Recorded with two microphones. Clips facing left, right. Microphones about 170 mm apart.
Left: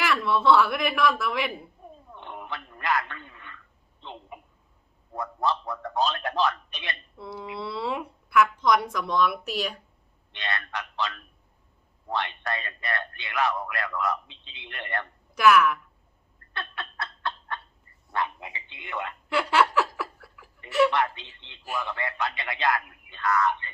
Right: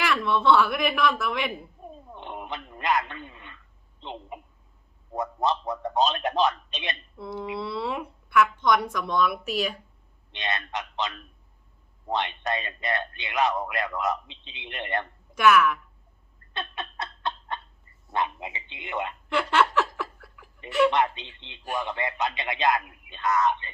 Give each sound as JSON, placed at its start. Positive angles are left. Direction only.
{"t": 0.0, "sound": "speech", "side_deg": 0}
{"t": 1.8, "sound": "a sound", "side_deg": -20}
{"t": 4.0, "sound": "a man's voice", "side_deg": -20}
{"t": 7.2, "sound": "speech", "side_deg": 0}
{"t": 10.3, "sound": "a man's voice", "side_deg": -20}
{"t": 15.4, "sound": "speech", "side_deg": 0}
{"t": 16.5, "sound": "a sound", "side_deg": -20}
{"t": 18.1, "sound": "a man's voice", "side_deg": -20}
{"t": 19.3, "sound": "laughter", "side_deg": 5}
{"t": 20.9, "sound": "a man's voice", "side_deg": -20}